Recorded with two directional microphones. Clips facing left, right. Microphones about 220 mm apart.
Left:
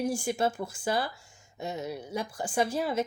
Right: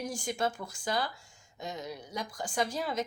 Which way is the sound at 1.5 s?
25° left (ahead or behind).